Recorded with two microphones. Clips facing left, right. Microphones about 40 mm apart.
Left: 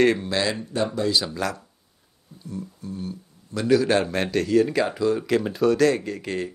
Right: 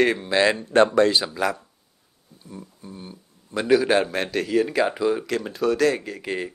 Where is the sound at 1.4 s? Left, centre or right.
Centre.